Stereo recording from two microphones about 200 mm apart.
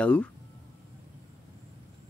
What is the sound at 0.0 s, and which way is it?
Speech, 5° left (ahead or behind).